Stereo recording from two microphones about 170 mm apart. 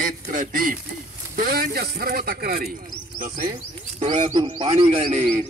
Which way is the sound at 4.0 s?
40° right (ahead or behind).